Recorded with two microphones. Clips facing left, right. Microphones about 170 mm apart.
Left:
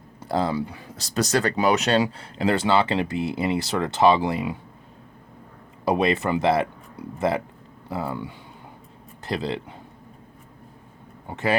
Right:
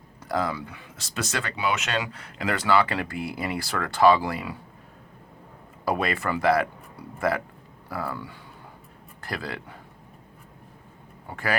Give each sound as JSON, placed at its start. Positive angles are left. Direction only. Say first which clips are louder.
{"t": 0.2, "sound": "speech", "louder": "left 4 dB", "side_deg": 30}
{"t": 5.8, "sound": "speech", "louder": "left 5 dB", "side_deg": 20}
{"t": 11.3, "sound": "speech", "louder": "left 5 dB", "side_deg": 20}